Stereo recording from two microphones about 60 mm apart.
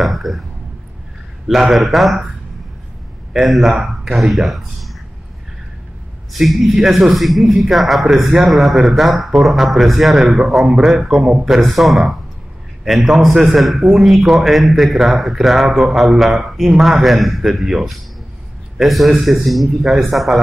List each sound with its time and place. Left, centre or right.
0.0 s speech: centre
1.5 s a man's voice: centre
3.3 s a man's voice: centre
6.3 s a man's voice: centre